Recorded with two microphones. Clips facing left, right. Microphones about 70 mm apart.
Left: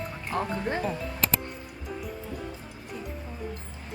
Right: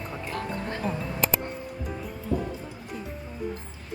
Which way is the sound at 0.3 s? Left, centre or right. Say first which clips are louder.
Left 5 dB; left.